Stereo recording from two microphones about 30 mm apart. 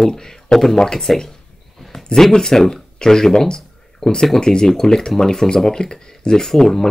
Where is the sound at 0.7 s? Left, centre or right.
Left.